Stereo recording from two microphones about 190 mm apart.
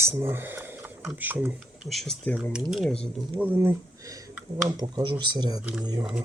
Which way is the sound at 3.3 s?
10° right (ahead or behind).